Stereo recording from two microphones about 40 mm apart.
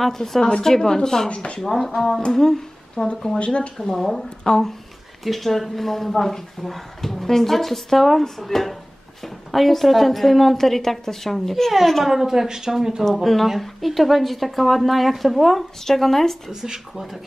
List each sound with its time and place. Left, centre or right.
0.0 s a woman's voice: centre
1.3 s speech: left
1.6 s a woman's voice: centre; by 3.7 s left
3.7 s a woman's voice: centre
5.2 s speech: centre
12.0 s speech: centre
13.0 s speech: centre